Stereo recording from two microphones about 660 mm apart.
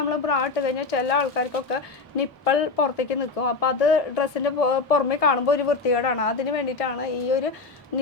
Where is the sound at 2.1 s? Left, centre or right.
Left.